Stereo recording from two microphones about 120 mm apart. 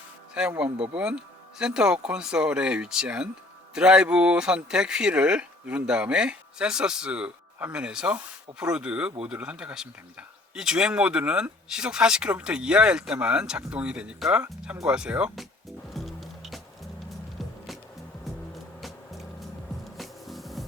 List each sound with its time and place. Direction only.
0.3 s speech: 10° right (ahead or behind)
15.9 s music: centre (ahead or behind)
18.8 s music: centre (ahead or behind)